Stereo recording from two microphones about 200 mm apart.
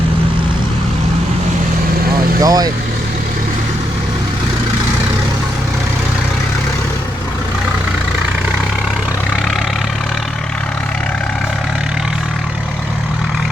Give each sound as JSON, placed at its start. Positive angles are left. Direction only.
{"t": 2.4, "sound": "speech", "side_deg": -20}